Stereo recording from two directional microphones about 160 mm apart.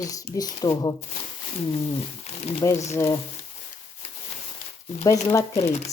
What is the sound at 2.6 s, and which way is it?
Speech, 20° left (ahead or behind).